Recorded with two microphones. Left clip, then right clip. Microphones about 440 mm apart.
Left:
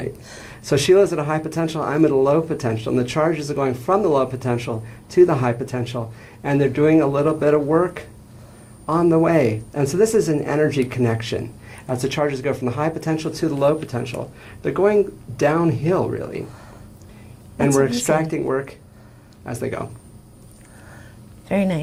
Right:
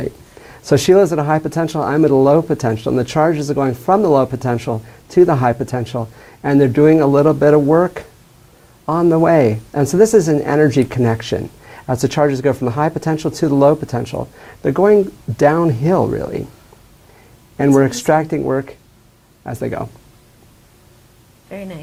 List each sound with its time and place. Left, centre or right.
0.6 s speech: right
17.7 s speech: right
21.5 s a woman's voice: left